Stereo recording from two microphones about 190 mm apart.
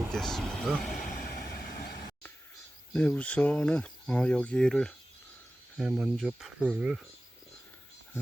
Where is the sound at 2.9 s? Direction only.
5° left (ahead or behind).